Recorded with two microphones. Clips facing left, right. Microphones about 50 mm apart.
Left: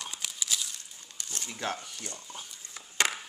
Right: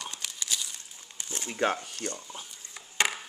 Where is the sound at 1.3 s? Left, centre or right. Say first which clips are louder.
Right 7 dB; right.